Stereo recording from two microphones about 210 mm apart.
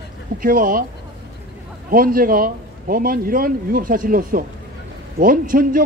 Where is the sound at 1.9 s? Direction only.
45° right (ahead or behind).